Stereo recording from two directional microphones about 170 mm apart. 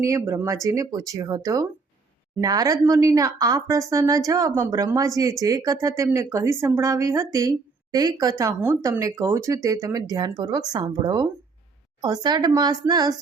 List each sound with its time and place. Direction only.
0.0 s speech: 15° right (ahead or behind)